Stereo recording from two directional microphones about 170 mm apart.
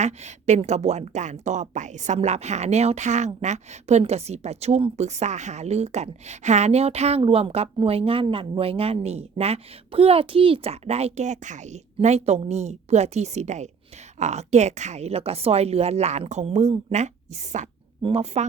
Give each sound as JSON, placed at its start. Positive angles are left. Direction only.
{"t": 0.0, "sound": "speech", "side_deg": -40}